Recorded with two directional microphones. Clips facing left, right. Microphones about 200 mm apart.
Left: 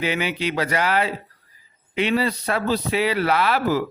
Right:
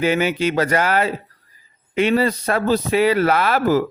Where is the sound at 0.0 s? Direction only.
45° right (ahead or behind).